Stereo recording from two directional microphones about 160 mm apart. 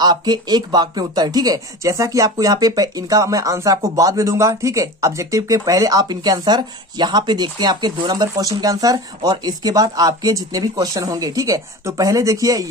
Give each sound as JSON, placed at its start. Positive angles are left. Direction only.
{"t": 0.0, "sound": "speech", "side_deg": -25}